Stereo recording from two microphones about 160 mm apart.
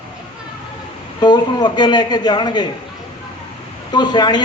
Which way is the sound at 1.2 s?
25° left (ahead or behind).